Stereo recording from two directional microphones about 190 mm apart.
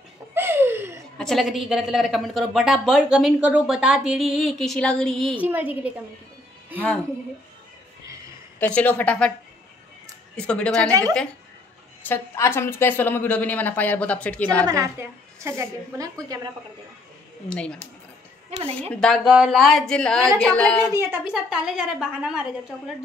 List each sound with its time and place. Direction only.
0.3 s a sound: 10° right (ahead or behind)
1.1 s a woman's voice: centre (ahead or behind)
5.4 s a woman's voice: 10° right (ahead or behind)
8.5 s a woman's voice: 5° left (ahead or behind)
10.3 s a woman's voice: 5° left (ahead or behind)
10.9 s a woman's voice: 20° right (ahead or behind)
12.0 s a woman's voice: 10° left (ahead or behind)
14.7 s a woman's voice: 15° right (ahead or behind)
17.5 s a woman's voice: 5° left (ahead or behind)
20.8 s a woman's voice: 15° right (ahead or behind)